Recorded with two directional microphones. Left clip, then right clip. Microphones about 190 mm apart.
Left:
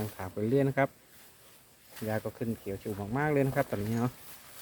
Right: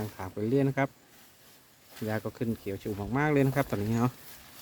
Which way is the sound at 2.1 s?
15° right (ahead or behind).